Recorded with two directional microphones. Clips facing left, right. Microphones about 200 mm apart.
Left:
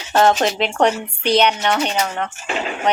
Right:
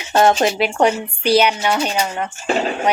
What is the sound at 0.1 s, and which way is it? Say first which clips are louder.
Speech: right 1 dB; 10° right (ahead or behind).